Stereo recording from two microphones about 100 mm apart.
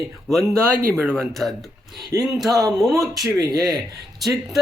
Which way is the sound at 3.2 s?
35° right (ahead or behind).